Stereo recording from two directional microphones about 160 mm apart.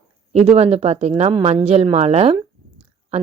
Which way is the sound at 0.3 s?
40° right (ahead or behind).